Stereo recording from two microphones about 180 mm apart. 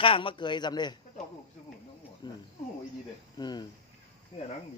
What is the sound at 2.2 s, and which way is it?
Cricket, 25° left (ahead or behind).